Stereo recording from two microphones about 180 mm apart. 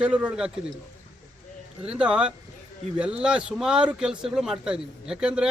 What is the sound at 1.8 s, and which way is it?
A man's voice, 5° right (ahead or behind).